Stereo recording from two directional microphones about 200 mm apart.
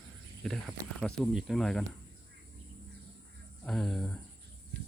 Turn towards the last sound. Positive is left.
turn(degrees=0)  # may be behind; listen again after turning